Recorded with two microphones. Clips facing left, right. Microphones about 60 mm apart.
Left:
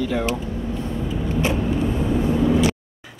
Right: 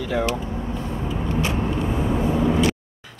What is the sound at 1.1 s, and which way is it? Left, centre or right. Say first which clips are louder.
Vehicle: left 2 dB; right.